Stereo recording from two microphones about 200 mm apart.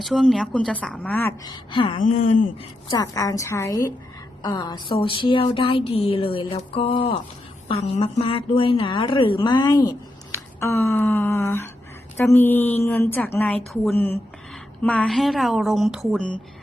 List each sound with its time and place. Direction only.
0.0 s a woman's voice: centre (ahead or behind)
1.5 s a sound: 25° left (ahead or behind)
2.0 s speech: 40° left (ahead or behind)
2.9 s a woman's voice: 15° left (ahead or behind)
4.4 s a sound: 20° left (ahead or behind)
12.1 s a woman's voice: 10° left (ahead or behind)